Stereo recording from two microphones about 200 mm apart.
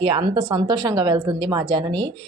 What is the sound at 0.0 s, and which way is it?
Speech, 20° right (ahead or behind).